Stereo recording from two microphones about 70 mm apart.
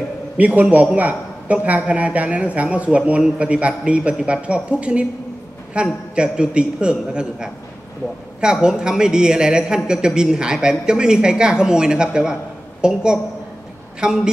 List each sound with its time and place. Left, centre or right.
0.4 s a man's voice: right